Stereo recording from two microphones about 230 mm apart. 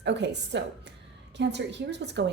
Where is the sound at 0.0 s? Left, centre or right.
Right.